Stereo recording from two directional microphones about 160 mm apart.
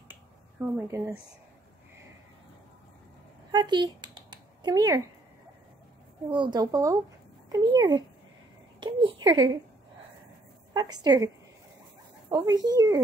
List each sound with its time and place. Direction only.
0.1 s finger snapping: 15° right (ahead or behind)
3.5 s speech: 30° right (ahead or behind)
6.3 s speech: 30° right (ahead or behind)
10.7 s a woman's voice: 25° right (ahead or behind)
12.3 s speech: 25° right (ahead or behind)